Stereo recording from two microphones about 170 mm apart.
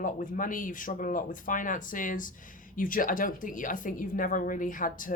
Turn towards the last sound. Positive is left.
turn(degrees=50)  # may be behind; listen again after turning